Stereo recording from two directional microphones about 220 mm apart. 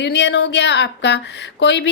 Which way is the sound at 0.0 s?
50° left (ahead or behind).